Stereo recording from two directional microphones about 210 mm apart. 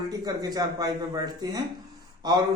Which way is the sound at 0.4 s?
20° right (ahead or behind).